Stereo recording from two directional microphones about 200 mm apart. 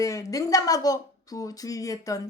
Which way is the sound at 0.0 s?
15° left (ahead or behind).